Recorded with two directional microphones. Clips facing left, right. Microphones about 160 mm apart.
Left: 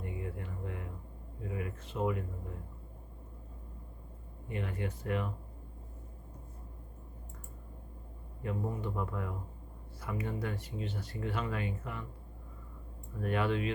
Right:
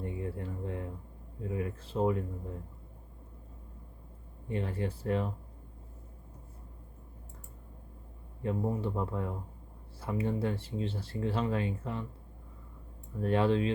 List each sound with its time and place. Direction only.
0.0 s a sound: 30° right (ahead or behind)
1.5 s speech: 30° right (ahead or behind)
4.4 s speech: 30° right (ahead or behind)
8.4 s speech: 30° right (ahead or behind)
13.2 s speech: 30° right (ahead or behind)